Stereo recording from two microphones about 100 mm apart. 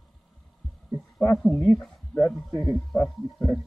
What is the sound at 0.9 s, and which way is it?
A man's voice, 15° left (ahead or behind).